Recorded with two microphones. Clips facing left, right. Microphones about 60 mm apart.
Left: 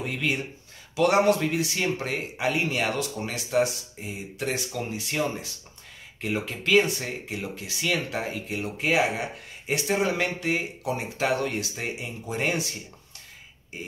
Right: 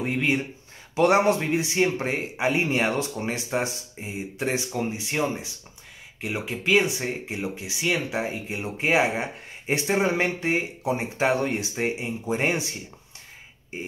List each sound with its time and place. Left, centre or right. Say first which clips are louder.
0.0 s speech: right 4 dB; right